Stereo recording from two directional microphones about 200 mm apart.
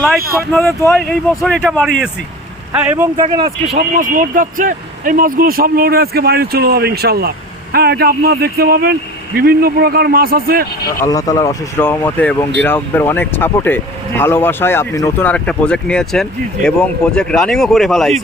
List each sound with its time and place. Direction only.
0.3 s speech: centre (ahead or behind)
2.7 s speech: 10° right (ahead or behind)
3.2 s speech: 25° right (ahead or behind)
3.8 s speech: 45° right (ahead or behind)
11.0 s speech: 15° left (ahead or behind); by 18.2 s centre (ahead or behind)